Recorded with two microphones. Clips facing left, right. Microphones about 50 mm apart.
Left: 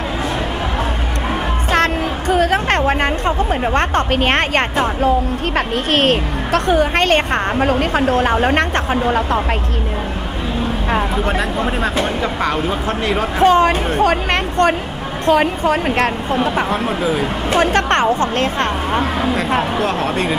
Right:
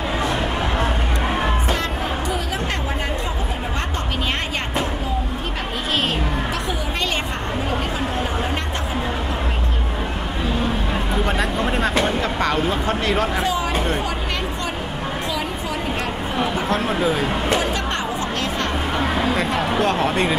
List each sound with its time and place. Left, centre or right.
1.7 s music: left
5.9 s a woman's voice: left
11.2 s speech: centre
13.4 s a woman's voice: left
16.7 s speech: centre
17.5 s a woman's voice: left
19.7 s speech: centre